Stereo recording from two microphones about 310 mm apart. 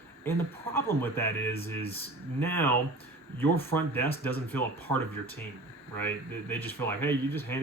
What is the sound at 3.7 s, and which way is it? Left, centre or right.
Speech, centre.